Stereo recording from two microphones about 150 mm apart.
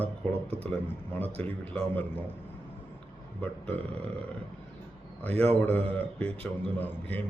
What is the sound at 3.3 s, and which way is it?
Speech, 10° left (ahead or behind).